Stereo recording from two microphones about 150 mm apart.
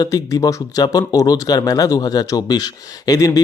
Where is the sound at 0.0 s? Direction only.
25° left (ahead or behind).